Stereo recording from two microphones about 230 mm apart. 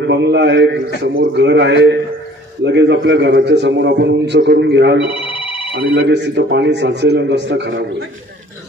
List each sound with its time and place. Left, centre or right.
0.0 s a man's voice: right
5.1 s telephone bell ringing: left
5.8 s a man's voice: right